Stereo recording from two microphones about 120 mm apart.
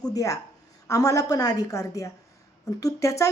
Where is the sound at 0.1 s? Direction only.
30° left (ahead or behind).